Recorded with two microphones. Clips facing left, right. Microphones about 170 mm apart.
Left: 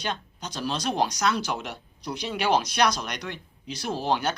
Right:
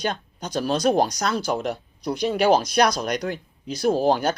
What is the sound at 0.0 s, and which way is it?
Speech, 50° right (ahead or behind).